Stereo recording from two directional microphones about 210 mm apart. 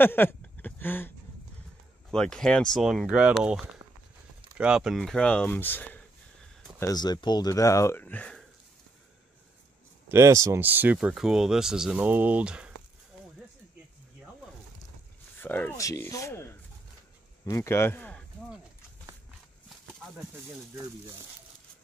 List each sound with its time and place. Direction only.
0.0 s a sound: 10° left (ahead or behind)
2.0 s speech: centre (ahead or behind)
6.9 s speech: 20° left (ahead or behind)
10.0 s speech: 15° right (ahead or behind)
15.4 s speech: 10° left (ahead or behind)